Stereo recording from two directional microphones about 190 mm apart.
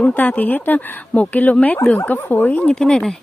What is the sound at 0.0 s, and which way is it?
Speech, 10° left (ahead or behind).